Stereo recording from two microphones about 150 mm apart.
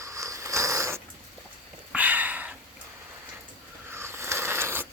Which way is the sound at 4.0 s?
15° right (ahead or behind).